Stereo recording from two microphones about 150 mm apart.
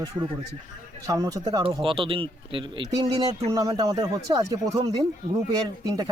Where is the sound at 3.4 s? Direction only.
25° right (ahead or behind).